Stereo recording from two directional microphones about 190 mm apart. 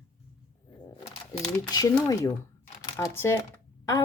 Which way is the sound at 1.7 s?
20° left (ahead or behind).